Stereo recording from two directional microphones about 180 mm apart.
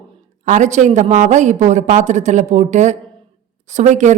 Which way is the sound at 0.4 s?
40° right (ahead or behind).